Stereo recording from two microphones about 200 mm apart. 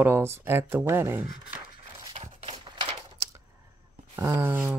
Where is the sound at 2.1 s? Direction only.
30° right (ahead or behind).